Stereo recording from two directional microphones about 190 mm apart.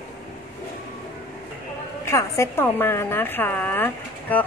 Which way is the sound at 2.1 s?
15° left (ahead or behind).